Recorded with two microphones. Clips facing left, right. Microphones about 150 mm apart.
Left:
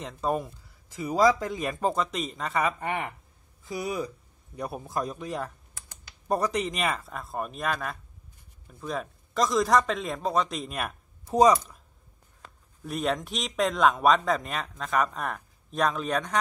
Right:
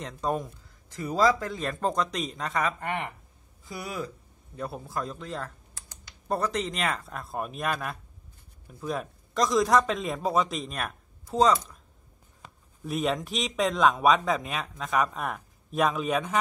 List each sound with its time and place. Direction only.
0.0 s speech: 5° left (ahead or behind)
2.8 s speech: 15° left (ahead or behind)
11.2 s speech: 15° left (ahead or behind)
12.8 s speech: centre (ahead or behind)